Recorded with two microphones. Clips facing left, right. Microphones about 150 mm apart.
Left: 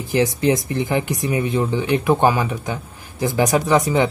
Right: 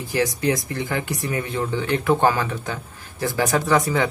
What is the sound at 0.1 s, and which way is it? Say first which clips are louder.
Speech: left 4 dB; 20° left (ahead or behind).